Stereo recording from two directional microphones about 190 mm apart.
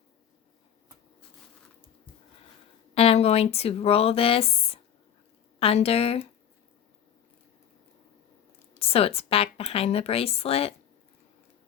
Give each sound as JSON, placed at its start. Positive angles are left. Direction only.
{"t": 2.9, "sound": "a woman's voice", "side_deg": 30}
{"t": 8.8, "sound": "a woman's voice", "side_deg": 30}